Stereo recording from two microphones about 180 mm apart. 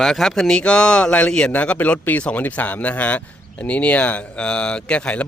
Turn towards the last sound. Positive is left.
turn(degrees=5)  # may be behind; listen again after turning